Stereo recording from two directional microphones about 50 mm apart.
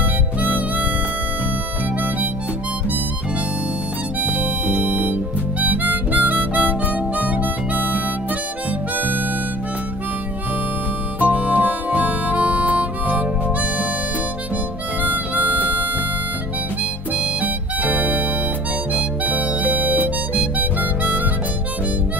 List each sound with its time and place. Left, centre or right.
0.4 s harmonica: right
4.2 s harmonica: right
11.1 s music: right
15.0 s harmonica: right
17.2 s harmonica: right